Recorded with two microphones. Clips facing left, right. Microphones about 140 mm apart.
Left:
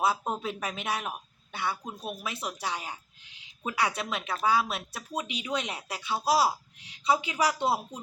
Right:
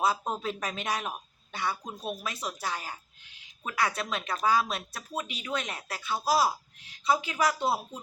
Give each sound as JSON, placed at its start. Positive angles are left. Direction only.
{"t": 0.0, "sound": "speech", "side_deg": 5}
{"t": 4.0, "sound": "speech", "side_deg": 5}